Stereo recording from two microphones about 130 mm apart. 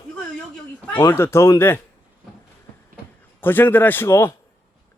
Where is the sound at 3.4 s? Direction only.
15° left (ahead or behind).